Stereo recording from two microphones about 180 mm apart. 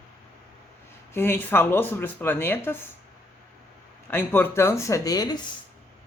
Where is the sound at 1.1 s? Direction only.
10° left (ahead or behind).